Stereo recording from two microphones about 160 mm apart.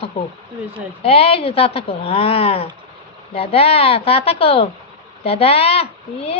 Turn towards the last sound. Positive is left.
turn(degrees=40)  # may be behind; listen again after turning